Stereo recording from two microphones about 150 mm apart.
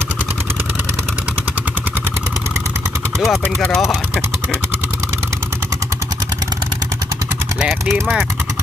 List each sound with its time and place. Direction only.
3.2 s speech: centre (ahead or behind)
7.6 s speech: centre (ahead or behind)